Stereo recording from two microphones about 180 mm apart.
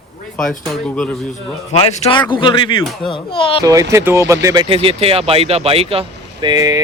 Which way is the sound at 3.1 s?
30° left (ahead or behind).